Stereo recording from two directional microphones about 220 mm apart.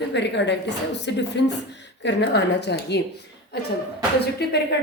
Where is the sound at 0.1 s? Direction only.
50° left (ahead or behind).